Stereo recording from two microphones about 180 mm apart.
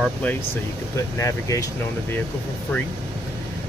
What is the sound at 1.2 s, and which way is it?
Speech, 20° left (ahead or behind).